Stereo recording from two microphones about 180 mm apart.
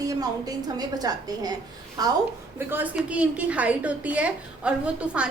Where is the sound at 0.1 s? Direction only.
20° right (ahead or behind).